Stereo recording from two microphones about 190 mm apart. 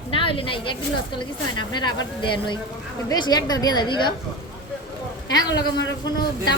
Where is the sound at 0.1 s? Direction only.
30° left (ahead or behind).